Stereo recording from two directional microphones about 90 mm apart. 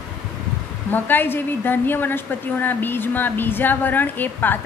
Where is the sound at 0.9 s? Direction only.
20° left (ahead or behind).